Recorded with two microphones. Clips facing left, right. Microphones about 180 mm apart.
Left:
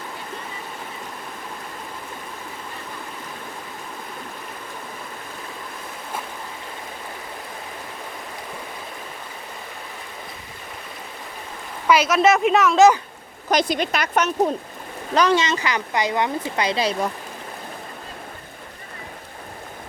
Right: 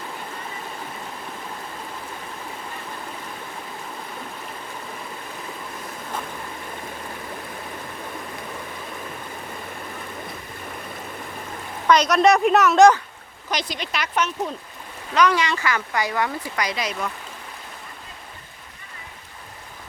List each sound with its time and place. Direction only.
11.9 s speech: 5° left (ahead or behind)
13.5 s speech: 50° left (ahead or behind)
15.1 s speech: 30° left (ahead or behind)